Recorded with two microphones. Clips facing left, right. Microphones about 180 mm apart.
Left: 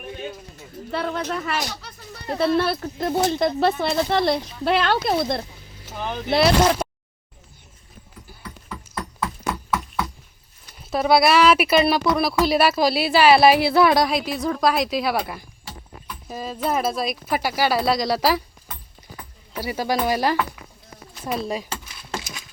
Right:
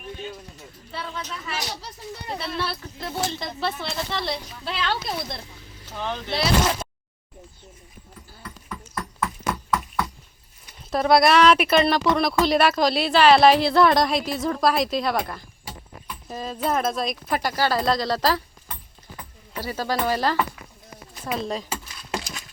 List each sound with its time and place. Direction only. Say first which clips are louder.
0.9 s speech: left 8 dB; 60° left (ahead or behind)
6.0 s speech: left 2 dB; 10° left (ahead or behind)
6.3 s speech: left 6 dB; 60° left (ahead or behind)
9.2 s a sound: even; 10° left (ahead or behind)
10.9 s a woman's voice: even; 5° left (ahead or behind)
19.5 s speech: left 3 dB; 10° left (ahead or behind)
21.3 s speech: left 1 dB; 10° left (ahead or behind)
21.7 s a sound: right 1 dB; centre (ahead or behind)